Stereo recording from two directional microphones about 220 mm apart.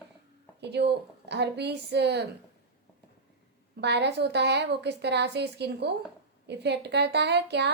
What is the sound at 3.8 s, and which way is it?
A woman's voice, 50° right (ahead or behind).